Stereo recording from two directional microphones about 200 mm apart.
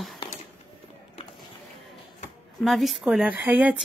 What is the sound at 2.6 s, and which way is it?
Speech, centre (ahead or behind).